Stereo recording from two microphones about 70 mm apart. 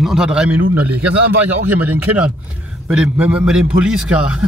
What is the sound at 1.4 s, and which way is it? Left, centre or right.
A man's voice, right.